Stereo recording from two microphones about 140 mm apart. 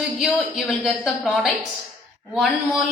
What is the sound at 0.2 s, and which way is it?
A woman's voice, 5° right (ahead or behind).